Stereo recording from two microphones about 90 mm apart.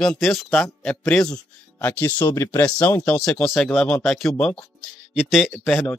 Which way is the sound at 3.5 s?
Centre (ahead or behind).